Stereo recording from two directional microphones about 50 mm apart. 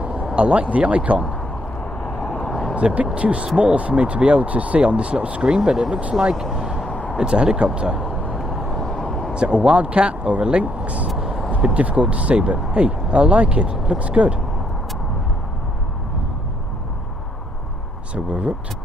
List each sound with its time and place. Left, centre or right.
0.0 s a sound: right
0.3 s speech: right
1.8 s vehicle: left
2.7 s speech: right
5.7 s speech: centre
6.9 s a sound: left
7.2 s speech: centre
8.8 s a sound: centre
9.3 s speech: right
11.1 s vehicle: centre
11.6 s speech: right
18.1 s speech: right